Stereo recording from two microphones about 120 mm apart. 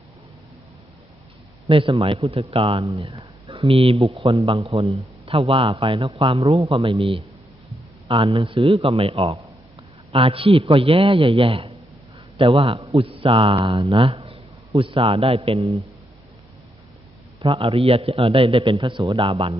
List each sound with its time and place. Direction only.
1.6 s a man's voice: 45° right (ahead or behind)
17.4 s a man's voice: 45° right (ahead or behind)